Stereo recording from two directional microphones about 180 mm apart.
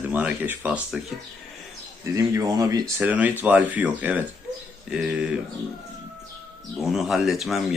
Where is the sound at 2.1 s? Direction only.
20° right (ahead or behind).